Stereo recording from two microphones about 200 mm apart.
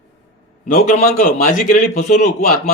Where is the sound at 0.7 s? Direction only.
45° left (ahead or behind).